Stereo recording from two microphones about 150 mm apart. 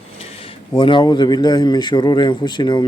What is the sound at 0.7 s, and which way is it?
A man's voice, 30° left (ahead or behind).